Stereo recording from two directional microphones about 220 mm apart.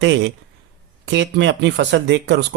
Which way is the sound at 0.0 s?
55° right (ahead or behind).